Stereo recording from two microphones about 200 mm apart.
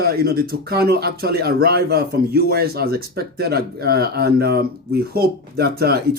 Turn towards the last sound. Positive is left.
turn(degrees=-50)  # may be behind; listen again after turning